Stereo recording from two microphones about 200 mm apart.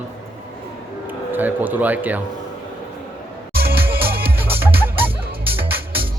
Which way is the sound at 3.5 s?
50° right (ahead or behind).